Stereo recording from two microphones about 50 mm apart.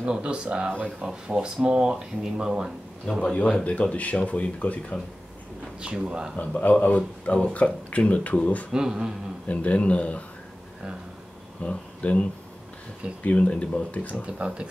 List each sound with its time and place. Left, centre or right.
0.0 s speech: right
3.1 s speech: centre
5.8 s speech: centre
6.6 s speech: left
8.7 s speech: centre
9.5 s speech: left
11.6 s speech: left
14.2 s speech: right